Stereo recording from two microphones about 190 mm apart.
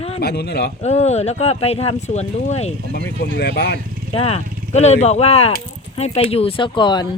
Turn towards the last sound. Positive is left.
turn(degrees=25)  # may be behind; listen again after turning